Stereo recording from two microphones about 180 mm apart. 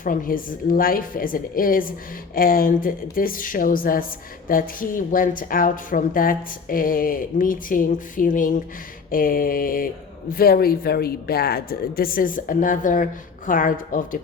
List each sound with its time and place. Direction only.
0.0 s speech: 50° left (ahead or behind)